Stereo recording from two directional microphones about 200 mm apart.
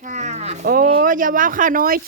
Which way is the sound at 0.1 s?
35° right (ahead or behind).